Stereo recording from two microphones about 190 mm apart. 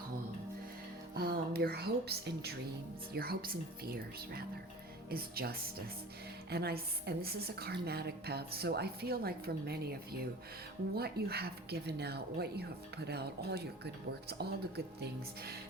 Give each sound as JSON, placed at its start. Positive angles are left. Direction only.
{"t": 1.1, "sound": "a woman's voice", "side_deg": -55}